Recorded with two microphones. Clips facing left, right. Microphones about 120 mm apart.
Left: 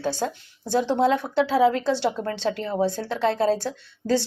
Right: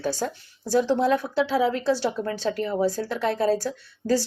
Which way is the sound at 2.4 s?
25° left (ahead or behind).